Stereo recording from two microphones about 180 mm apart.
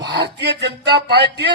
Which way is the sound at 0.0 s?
70° right (ahead or behind).